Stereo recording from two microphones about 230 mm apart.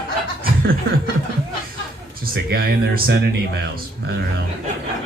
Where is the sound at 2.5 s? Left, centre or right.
Right.